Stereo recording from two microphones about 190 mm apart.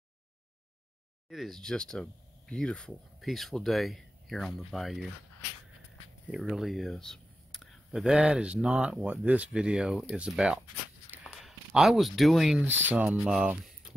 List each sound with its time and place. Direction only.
1.3 s speech: centre (ahead or behind)
6.3 s speech: centre (ahead or behind)